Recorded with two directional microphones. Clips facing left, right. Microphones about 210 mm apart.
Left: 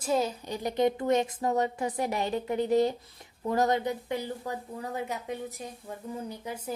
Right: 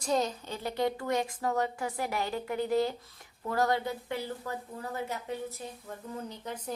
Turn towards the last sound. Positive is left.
turn(degrees=10)  # may be behind; listen again after turning